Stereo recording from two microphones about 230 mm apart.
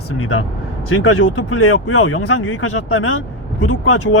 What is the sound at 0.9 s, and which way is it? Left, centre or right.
Speech, left.